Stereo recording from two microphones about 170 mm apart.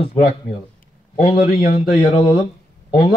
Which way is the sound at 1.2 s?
30° left (ahead or behind).